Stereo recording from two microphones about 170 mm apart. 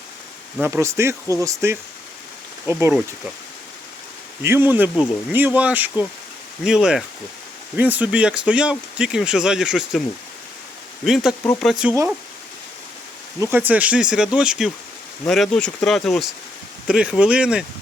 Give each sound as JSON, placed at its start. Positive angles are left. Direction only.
{"t": 0.6, "sound": "speech", "side_deg": -15}
{"t": 4.4, "sound": "speech", "side_deg": -15}
{"t": 11.0, "sound": "speech", "side_deg": 0}
{"t": 13.4, "sound": "speech", "side_deg": -10}